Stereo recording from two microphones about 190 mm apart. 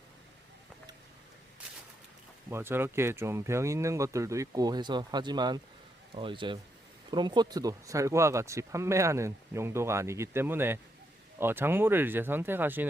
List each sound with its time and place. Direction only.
2.5 s a man's voice: 10° right (ahead or behind)